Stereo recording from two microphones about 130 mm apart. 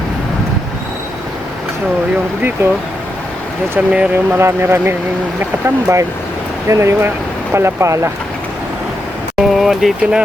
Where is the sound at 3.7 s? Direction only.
10° right (ahead or behind).